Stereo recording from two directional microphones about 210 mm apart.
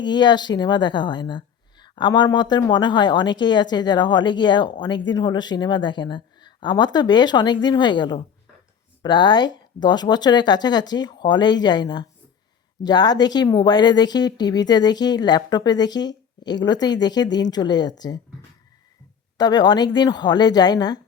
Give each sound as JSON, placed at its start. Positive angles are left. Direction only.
{"t": 0.0, "sound": "a woman's voice", "side_deg": 20}
{"t": 19.4, "sound": "a woman's voice", "side_deg": 20}